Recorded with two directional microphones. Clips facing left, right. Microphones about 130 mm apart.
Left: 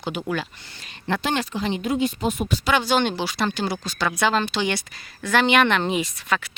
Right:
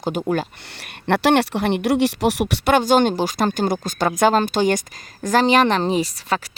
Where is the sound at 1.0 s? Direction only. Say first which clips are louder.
Right 8 dB; 65° right (ahead or behind).